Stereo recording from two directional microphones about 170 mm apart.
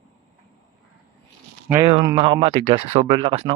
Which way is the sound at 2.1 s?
35° right (ahead or behind).